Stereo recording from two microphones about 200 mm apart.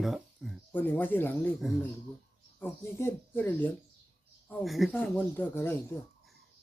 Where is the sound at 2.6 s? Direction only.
10° left (ahead or behind).